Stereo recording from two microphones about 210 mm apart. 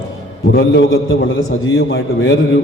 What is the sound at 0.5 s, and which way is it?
Speech, 55° left (ahead or behind).